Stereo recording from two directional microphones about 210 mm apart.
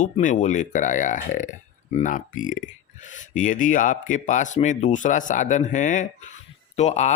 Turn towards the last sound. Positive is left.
turn(degrees=35)  # may be behind; listen again after turning